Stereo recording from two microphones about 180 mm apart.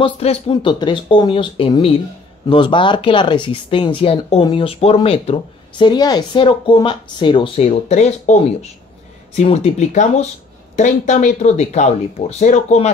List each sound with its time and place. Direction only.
0.0 s speech: 30° left (ahead or behind)